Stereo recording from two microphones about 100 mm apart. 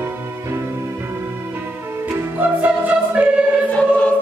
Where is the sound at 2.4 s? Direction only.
15° right (ahead or behind).